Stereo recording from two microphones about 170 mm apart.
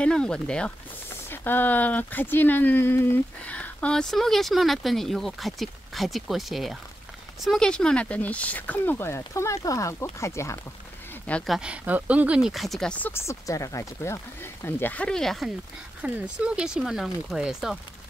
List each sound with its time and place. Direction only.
0.0 s speech: 5° left (ahead or behind)
11.2 s speech: 5° left (ahead or behind)